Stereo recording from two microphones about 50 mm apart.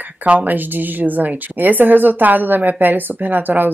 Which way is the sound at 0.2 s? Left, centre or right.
Right.